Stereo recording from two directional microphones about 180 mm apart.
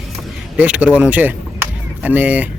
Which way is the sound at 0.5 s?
10° right (ahead or behind).